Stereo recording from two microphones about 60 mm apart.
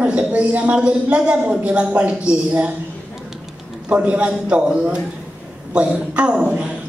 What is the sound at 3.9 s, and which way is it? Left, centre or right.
A man's voice, centre.